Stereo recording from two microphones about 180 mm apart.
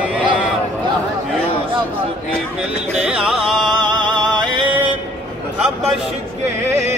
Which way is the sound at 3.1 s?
5° right (ahead or behind).